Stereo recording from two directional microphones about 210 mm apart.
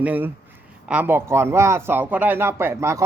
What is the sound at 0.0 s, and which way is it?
Speech, 5° right (ahead or behind).